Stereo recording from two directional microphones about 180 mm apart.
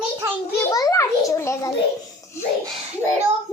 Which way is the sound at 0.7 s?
20° left (ahead or behind).